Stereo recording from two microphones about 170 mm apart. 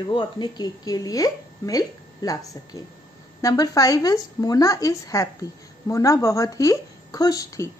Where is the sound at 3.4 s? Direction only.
20° left (ahead or behind).